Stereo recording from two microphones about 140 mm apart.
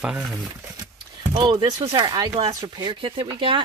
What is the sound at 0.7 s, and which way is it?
Speech, 30° right (ahead or behind).